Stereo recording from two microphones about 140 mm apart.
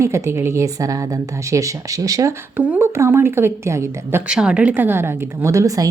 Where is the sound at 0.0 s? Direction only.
20° right (ahead or behind).